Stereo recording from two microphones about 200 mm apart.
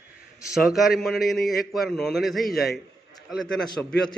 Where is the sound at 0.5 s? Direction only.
Centre (ahead or behind).